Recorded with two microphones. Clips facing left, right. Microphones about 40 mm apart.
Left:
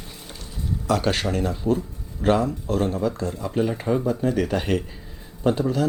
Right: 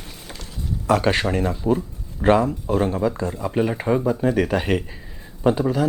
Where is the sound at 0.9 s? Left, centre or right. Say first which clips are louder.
Right 4 dB; right.